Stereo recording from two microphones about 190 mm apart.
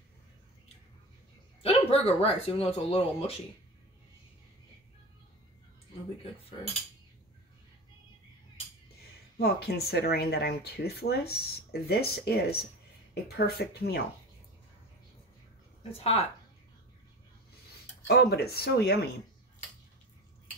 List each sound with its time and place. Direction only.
1.6 s speech: 30° left (ahead or behind)
9.4 s speech: 55° left (ahead or behind)
16.0 s speech: 30° left (ahead or behind)
18.0 s speech: 55° left (ahead or behind)